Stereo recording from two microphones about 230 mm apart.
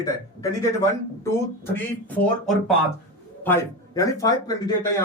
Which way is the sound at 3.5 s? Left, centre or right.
Centre.